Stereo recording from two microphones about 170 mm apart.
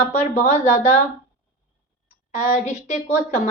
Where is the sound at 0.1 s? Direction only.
45° left (ahead or behind).